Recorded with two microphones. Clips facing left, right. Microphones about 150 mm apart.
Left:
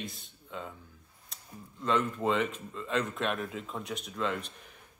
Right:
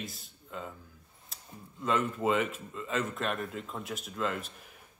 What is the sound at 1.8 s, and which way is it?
Speech, 5° right (ahead or behind).